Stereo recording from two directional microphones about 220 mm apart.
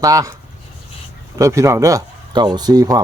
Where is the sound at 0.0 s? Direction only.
15° right (ahead or behind).